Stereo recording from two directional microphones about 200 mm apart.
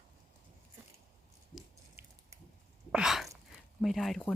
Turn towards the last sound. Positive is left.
turn(degrees=0)  # may be behind; listen again after turning